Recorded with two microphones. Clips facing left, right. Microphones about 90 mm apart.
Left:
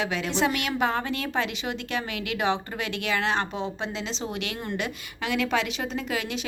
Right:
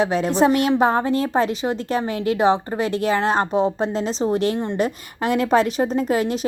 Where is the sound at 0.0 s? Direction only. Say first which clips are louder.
Right 8 dB; 40° right (ahead or behind).